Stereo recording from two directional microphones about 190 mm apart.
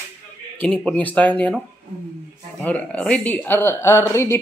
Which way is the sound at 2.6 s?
5° left (ahead or behind).